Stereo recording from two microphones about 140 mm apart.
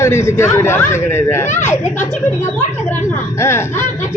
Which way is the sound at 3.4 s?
20° left (ahead or behind).